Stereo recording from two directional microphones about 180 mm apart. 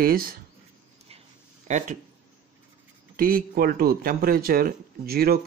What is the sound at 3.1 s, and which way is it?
Speech, 55° right (ahead or behind).